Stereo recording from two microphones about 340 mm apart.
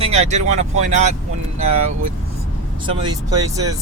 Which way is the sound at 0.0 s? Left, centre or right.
Centre.